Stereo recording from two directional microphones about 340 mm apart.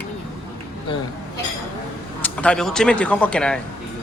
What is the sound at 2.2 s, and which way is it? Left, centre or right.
Speech, centre.